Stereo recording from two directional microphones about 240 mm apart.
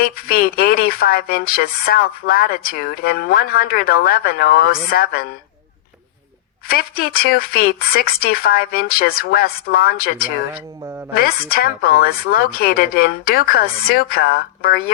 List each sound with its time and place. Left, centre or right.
0.0 s speech: left
6.7 s speech: left